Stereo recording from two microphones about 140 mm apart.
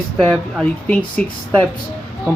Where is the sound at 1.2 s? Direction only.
10° left (ahead or behind).